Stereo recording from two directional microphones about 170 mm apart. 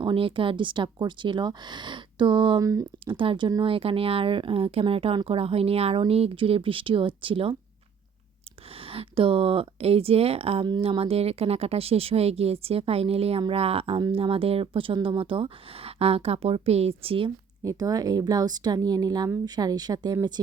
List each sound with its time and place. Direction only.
0.0 s speech: 30° right (ahead or behind)
8.9 s speech: 35° right (ahead or behind)
17.6 s speech: 20° right (ahead or behind)